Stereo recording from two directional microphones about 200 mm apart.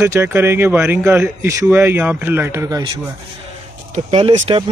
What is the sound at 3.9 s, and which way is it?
Speech, 30° right (ahead or behind).